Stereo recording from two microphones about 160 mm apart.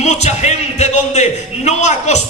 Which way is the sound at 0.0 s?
45° left (ahead or behind).